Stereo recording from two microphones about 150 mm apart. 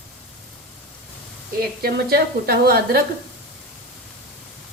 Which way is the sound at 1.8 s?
90° right.